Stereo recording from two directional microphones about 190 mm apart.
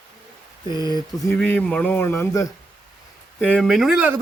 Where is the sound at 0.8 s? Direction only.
20° left (ahead or behind).